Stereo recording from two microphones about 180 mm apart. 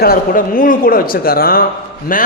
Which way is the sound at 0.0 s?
55° left (ahead or behind).